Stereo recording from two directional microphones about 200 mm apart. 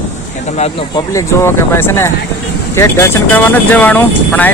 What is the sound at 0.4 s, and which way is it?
Speech, 35° left (ahead or behind).